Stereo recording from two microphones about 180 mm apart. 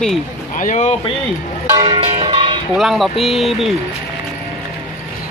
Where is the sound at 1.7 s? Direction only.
25° right (ahead or behind).